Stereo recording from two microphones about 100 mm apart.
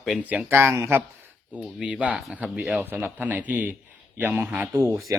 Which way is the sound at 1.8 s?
15° right (ahead or behind).